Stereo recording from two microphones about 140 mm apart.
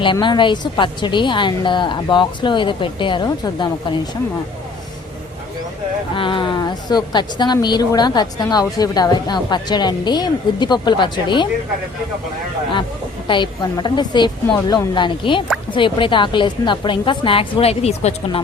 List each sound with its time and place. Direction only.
0.0 s a woman's voice: 35° left (ahead or behind)
6.1 s a woman's voice: 35° left (ahead or behind)
13.2 s a woman's voice: 35° left (ahead or behind)